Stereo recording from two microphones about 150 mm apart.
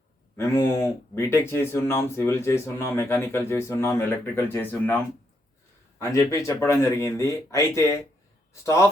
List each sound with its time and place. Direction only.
0.3 s speech: 20° left (ahead or behind)